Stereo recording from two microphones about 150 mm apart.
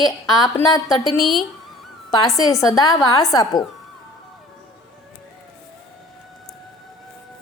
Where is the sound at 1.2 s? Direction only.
Centre (ahead or behind).